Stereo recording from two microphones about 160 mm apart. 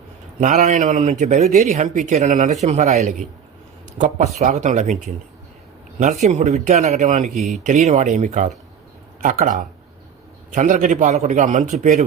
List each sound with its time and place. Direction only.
0.3 s speech: 55° right (ahead or behind)
6.2 s speech: 45° right (ahead or behind)
7.3 s speech: centre (ahead or behind)
7.6 s speech: 50° right (ahead or behind)